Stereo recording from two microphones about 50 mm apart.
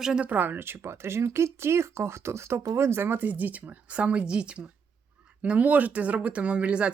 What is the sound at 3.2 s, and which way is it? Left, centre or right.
Speech, right.